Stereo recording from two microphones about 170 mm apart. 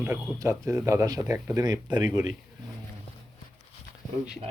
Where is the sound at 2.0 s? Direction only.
45° left (ahead or behind).